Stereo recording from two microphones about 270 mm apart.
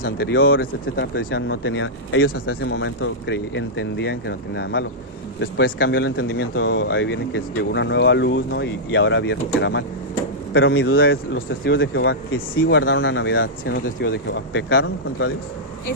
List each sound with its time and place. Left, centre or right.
0.0 s a man's voice: left